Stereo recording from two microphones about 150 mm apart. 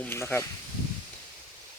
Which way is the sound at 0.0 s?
15° left (ahead or behind).